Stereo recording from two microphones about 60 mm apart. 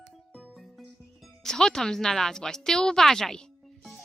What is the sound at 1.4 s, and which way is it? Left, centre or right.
Speech, centre.